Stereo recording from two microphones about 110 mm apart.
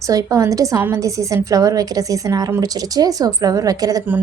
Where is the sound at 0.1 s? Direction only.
35° right (ahead or behind).